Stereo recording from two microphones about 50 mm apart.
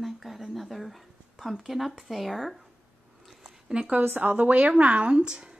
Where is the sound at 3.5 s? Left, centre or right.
Centre.